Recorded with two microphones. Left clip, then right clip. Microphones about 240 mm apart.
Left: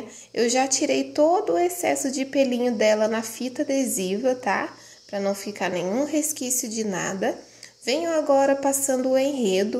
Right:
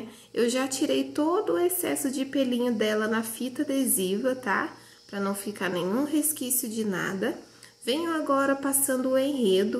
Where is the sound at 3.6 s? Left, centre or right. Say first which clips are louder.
Left 3 dB; left.